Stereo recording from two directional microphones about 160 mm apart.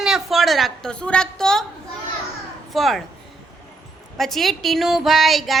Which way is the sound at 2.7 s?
Centre (ahead or behind).